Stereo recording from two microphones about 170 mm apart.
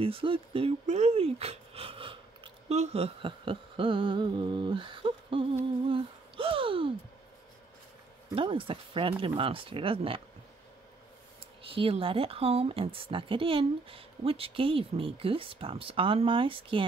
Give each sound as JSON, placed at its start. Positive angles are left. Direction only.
{"t": 0.0, "sound": "speech", "side_deg": -30}
{"t": 5.9, "sound": "a sound", "side_deg": -30}
{"t": 8.4, "sound": "speech", "side_deg": -30}
{"t": 11.7, "sound": "speech", "side_deg": -30}